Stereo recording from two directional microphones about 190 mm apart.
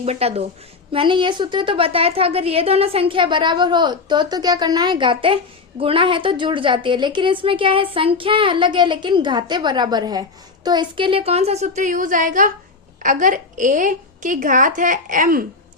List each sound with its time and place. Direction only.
0.0 s a woman's voice: 30° right (ahead or behind)